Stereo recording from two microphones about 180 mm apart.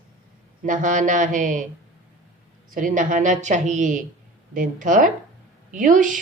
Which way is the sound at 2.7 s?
50° right (ahead or behind).